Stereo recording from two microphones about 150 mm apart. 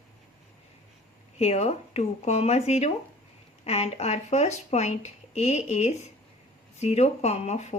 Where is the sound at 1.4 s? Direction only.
45° left (ahead or behind).